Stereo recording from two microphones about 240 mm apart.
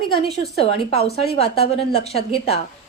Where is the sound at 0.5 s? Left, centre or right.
Left.